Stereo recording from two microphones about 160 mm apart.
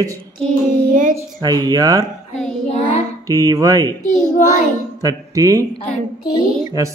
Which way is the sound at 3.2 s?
20° right (ahead or behind).